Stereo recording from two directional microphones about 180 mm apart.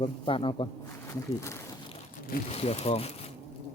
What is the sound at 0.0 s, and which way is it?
Speech, 30° left (ahead or behind).